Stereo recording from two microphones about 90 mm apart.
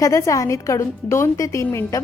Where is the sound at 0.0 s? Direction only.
35° left (ahead or behind).